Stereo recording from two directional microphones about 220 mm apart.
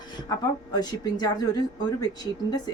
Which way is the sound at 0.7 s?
20° left (ahead or behind).